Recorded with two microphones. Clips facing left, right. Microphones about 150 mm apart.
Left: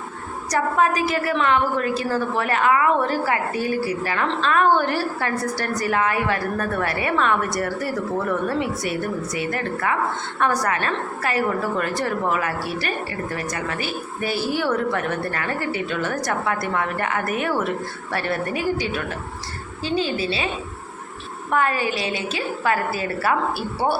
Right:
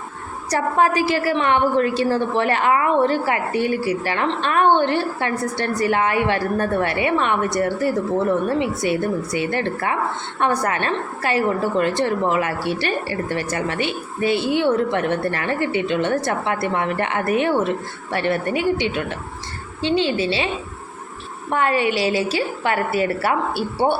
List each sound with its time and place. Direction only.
0.5 s a woman's voice: 30° right (ahead or behind)
21.5 s a woman's voice: 30° right (ahead or behind)